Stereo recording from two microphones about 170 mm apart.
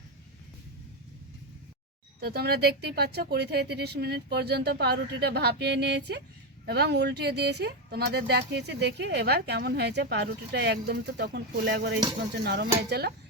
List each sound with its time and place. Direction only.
2.2 s speech: 70° right (ahead or behind)